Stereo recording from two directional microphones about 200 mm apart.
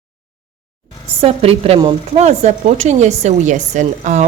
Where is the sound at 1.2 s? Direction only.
30° right (ahead or behind).